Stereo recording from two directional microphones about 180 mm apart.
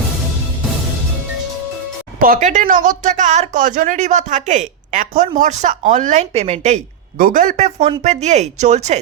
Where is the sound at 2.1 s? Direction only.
50° right (ahead or behind).